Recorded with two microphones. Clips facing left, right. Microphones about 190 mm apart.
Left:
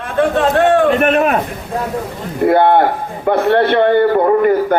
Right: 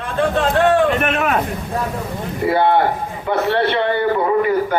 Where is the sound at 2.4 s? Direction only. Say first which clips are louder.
Left 4 dB; 55° left (ahead or behind).